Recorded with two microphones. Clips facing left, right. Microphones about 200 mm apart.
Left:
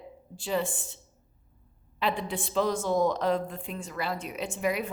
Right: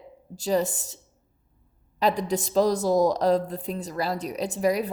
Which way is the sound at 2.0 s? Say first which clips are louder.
Right 6 dB; 40° right (ahead or behind).